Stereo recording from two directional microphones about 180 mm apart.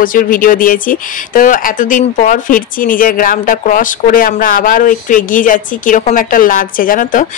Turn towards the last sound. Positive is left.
turn(degrees=45)  # may be behind; listen again after turning